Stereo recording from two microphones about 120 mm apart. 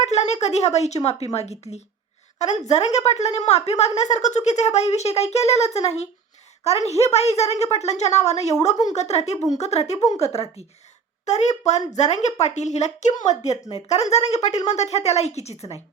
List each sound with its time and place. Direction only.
0.0 s a woman's voice: 70° left (ahead or behind)
11.3 s a woman's voice: 70° left (ahead or behind)